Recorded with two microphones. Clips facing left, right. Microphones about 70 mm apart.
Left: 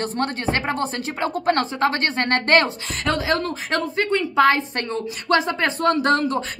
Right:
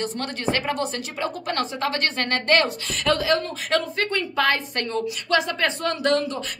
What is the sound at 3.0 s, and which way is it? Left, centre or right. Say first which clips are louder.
Speech: right 1 dB; left.